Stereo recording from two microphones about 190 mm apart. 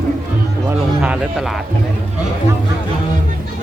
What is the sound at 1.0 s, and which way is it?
Speech, 5° right (ahead or behind).